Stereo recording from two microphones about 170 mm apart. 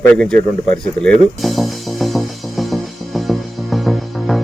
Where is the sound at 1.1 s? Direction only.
Centre (ahead or behind).